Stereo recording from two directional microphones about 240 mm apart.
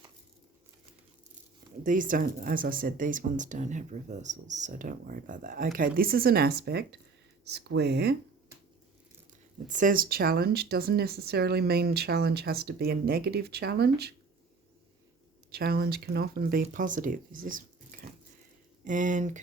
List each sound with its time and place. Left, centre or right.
1.8 s speech: right
9.6 s speech: right
15.5 s speech: right